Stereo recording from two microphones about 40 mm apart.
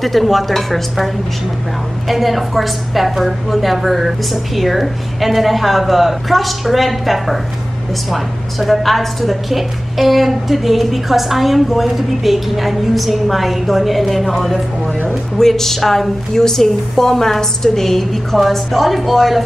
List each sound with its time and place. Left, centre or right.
0.0 s a woman's voice: centre